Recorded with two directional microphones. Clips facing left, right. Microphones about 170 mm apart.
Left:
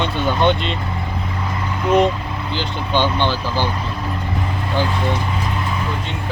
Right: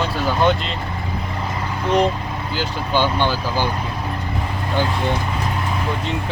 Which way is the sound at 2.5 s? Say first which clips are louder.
Even; 10° right (ahead or behind).